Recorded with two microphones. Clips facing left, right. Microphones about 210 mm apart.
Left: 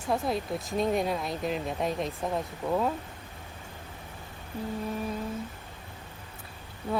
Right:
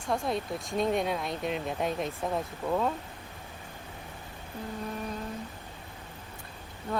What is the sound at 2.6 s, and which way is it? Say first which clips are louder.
Speech: left 1 dB; 15° left (ahead or behind).